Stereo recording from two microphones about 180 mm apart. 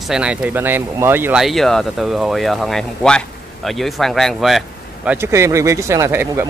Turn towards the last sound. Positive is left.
turn(degrees=-15)  # may be behind; listen again after turning